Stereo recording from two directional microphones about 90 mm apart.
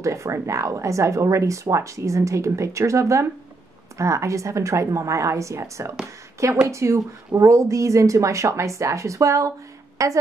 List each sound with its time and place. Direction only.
0.0 s speech: 35° right (ahead or behind)